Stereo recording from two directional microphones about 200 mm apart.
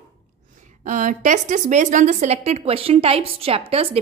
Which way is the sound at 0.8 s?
40° right (ahead or behind).